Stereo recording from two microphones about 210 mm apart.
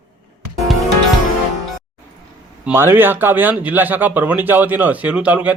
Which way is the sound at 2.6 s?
10° right (ahead or behind).